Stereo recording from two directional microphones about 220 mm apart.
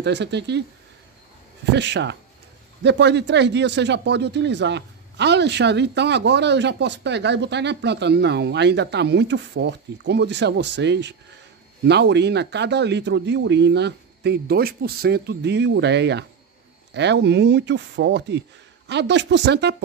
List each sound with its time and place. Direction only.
0.0 s speech: 50° right (ahead or behind)
1.7 s speech: 50° right (ahead or behind)